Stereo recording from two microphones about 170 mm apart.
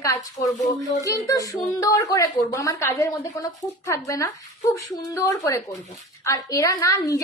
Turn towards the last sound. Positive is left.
turn(degrees=20)  # may be behind; listen again after turning